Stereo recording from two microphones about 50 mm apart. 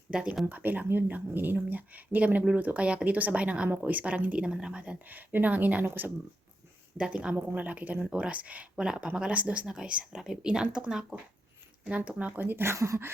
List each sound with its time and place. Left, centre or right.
0.1 s speech: centre
0.4 s speech: right
5.0 s speech: right
6.9 s speech: right
8.8 s speech: centre
12.4 s speech: right
12.7 s speech: right